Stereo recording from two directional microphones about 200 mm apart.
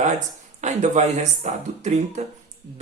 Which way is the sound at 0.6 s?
35° right (ahead or behind).